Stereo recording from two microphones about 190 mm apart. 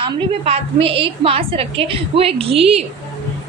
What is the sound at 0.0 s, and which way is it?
A woman's voice, 30° right (ahead or behind).